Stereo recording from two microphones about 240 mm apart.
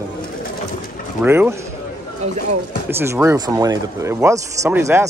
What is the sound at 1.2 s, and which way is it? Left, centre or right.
Speech, centre.